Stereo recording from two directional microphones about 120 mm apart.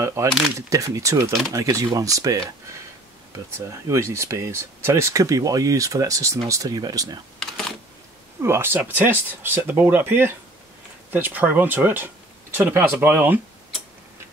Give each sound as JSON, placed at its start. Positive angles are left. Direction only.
{"t": 0.0, "sound": "speech", "side_deg": -25}
{"t": 3.5, "sound": "speech", "side_deg": -25}
{"t": 8.4, "sound": "speech", "side_deg": -20}